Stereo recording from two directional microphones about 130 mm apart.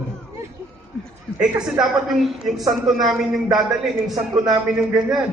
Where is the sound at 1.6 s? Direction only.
Centre (ahead or behind).